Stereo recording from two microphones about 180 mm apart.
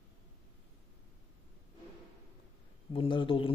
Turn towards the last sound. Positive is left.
turn(degrees=30)  # may be behind; listen again after turning